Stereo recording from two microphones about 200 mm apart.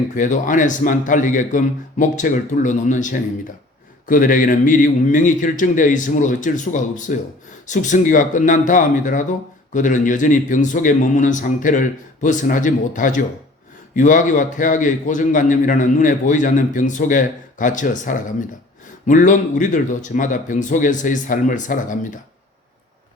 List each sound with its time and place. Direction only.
0.2 s a man's voice: 40° left (ahead or behind)